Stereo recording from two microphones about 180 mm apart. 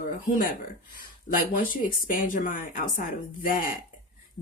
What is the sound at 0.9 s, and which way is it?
Speech, 50° left (ahead or behind).